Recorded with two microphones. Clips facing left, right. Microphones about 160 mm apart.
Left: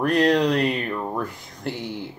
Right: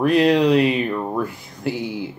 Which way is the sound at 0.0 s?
5° right (ahead or behind).